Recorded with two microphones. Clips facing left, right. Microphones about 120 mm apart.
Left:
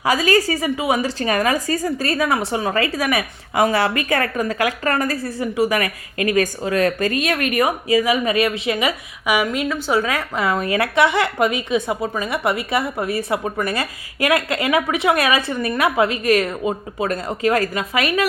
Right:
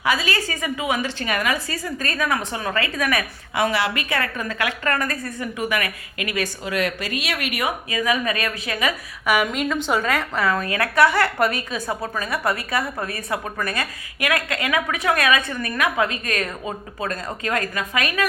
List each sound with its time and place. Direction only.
0.0 s a woman's voice: 40° left (ahead or behind)
3.5 s a woman's voice: 40° left (ahead or behind)
9.2 s a woman's voice: 10° left (ahead or behind)
10.4 s a woman's voice: 20° left (ahead or behind)